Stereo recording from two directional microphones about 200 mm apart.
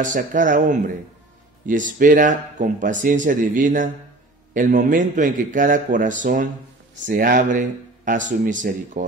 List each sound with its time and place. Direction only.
0.0 s speech: 40° right (ahead or behind)